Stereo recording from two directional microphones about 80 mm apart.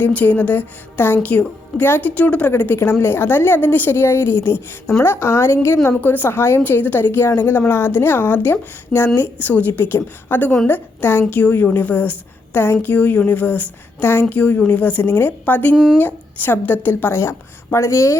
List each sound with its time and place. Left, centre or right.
0.0 s a woman's voice: centre
15.7 s speech: centre
16.0 s a woman's voice: left